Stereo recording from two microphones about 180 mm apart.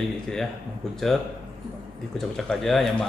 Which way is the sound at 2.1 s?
Centre (ahead or behind).